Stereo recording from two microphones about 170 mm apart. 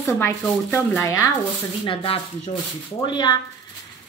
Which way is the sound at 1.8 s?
30° left (ahead or behind).